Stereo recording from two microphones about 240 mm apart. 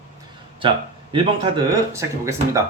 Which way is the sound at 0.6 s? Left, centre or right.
Right.